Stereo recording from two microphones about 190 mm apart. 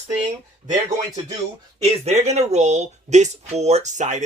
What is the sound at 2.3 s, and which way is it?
Speech, 35° right (ahead or behind).